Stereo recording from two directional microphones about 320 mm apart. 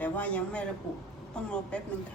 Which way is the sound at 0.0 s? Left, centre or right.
Centre.